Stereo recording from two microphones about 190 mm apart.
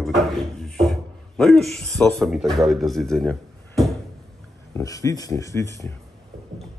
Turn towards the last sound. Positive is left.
turn(degrees=15)  # may be behind; listen again after turning